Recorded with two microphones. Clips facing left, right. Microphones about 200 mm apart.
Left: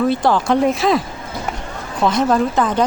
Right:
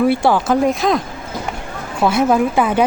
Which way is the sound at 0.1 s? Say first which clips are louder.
Right 1 dB; 10° right (ahead or behind).